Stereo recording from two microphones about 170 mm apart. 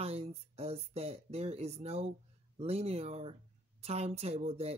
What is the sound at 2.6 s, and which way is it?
Speech, 40° right (ahead or behind).